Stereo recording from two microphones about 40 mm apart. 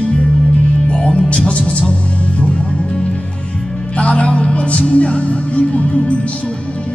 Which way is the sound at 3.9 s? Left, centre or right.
Left.